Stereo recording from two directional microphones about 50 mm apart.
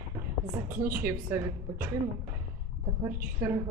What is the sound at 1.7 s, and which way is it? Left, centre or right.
Speech, right.